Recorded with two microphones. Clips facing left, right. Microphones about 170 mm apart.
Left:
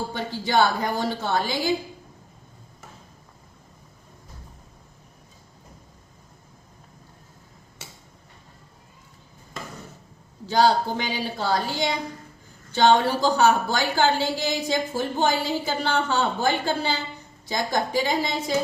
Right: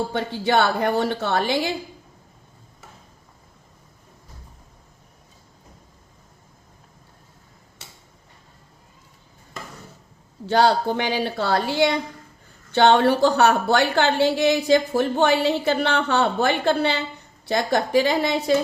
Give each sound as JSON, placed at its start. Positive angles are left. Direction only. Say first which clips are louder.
{"t": 0.1, "sound": "a woman's voice", "louder": "right 4 dB", "side_deg": -60}
{"t": 10.4, "sound": "a woman's voice", "louder": "right 2 dB", "side_deg": -65}